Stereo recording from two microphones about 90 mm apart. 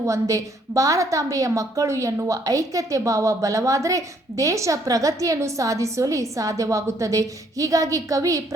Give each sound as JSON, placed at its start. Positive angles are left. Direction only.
{"t": 0.0, "sound": "a woman's voice", "side_deg": -35}